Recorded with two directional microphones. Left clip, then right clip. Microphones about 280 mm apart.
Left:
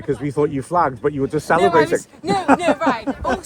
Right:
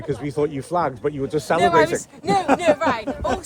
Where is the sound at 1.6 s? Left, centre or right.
Centre.